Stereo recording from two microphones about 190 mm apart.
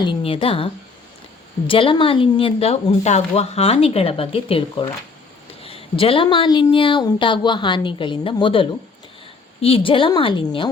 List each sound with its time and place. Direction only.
0.0 s speech: 25° left (ahead or behind)